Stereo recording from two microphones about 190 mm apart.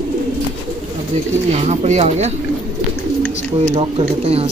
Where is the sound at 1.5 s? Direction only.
40° right (ahead or behind).